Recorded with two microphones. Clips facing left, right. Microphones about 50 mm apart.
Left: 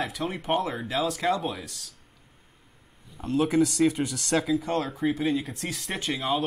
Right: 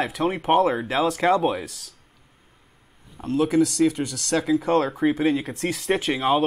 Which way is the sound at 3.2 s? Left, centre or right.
Centre.